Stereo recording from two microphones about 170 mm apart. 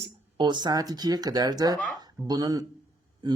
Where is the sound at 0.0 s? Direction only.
25° right (ahead or behind).